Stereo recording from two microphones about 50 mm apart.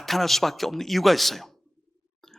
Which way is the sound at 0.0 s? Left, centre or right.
Centre.